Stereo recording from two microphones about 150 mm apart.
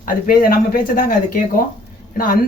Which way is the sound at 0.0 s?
75° left (ahead or behind).